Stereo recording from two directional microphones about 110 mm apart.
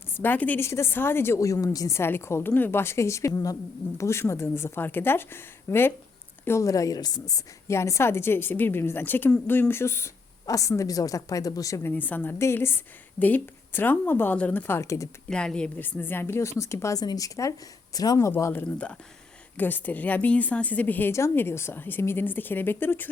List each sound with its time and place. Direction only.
0.1 s a woman's voice: 15° left (ahead or behind)
15.3 s a woman's voice: 10° left (ahead or behind); by 18.3 s 35° left (ahead or behind)
18.3 s a woman's voice: 25° left (ahead or behind)